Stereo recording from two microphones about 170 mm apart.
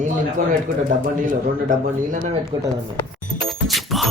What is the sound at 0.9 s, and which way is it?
A man's voice, 50° right (ahead or behind).